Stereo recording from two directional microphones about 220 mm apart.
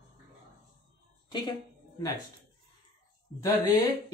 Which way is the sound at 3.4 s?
15° left (ahead or behind).